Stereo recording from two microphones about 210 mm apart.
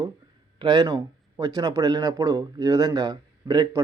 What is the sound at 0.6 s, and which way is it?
A man's voice, 20° right (ahead or behind).